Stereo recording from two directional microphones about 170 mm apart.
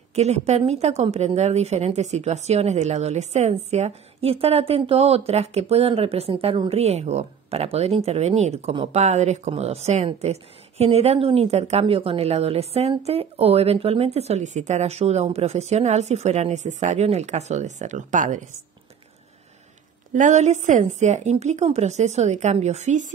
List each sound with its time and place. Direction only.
0.1 s a woman's voice: 40° right (ahead or behind)
20.1 s a woman's voice: 45° right (ahead or behind)